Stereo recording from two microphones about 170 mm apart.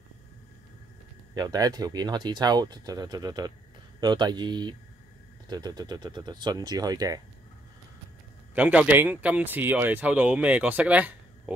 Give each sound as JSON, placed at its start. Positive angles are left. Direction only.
{"t": 1.3, "sound": "speech", "side_deg": -20}
{"t": 8.5, "sound": "speech", "side_deg": -10}